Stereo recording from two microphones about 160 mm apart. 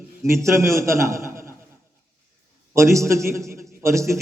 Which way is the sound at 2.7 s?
15° right (ahead or behind).